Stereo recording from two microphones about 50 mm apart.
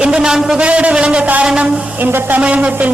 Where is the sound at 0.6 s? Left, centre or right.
Right.